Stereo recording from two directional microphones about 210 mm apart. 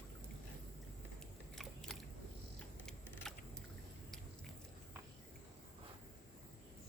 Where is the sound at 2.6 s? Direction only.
5° left (ahead or behind).